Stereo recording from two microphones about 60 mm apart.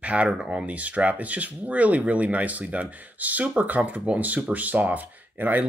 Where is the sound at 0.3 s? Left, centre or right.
Centre.